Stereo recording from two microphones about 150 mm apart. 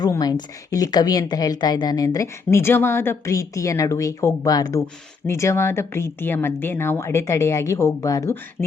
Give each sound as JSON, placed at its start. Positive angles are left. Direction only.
{"t": 0.0, "sound": "a woman's voice", "side_deg": 25}